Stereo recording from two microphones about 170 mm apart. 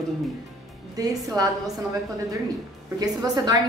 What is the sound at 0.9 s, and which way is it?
Speech, 20° right (ahead or behind).